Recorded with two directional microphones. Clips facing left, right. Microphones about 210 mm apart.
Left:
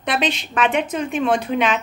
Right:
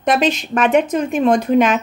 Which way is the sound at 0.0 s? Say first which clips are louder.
Right 6 dB; 45° right (ahead or behind).